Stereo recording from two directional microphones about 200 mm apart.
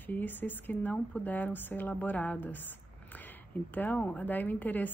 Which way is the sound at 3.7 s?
10° left (ahead or behind).